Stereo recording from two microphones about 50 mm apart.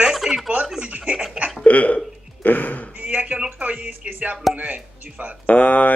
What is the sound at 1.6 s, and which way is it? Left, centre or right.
Hiccup, left.